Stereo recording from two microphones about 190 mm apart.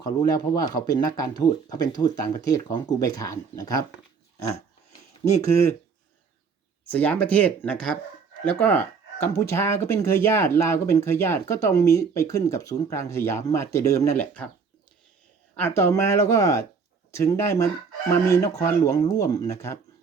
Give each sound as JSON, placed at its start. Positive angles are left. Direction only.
{"t": 0.0, "sound": "speech", "side_deg": 20}
{"t": 5.4, "sound": "speech", "side_deg": 15}
{"t": 6.9, "sound": "speech", "side_deg": 10}
{"t": 15.5, "sound": "speech", "side_deg": 10}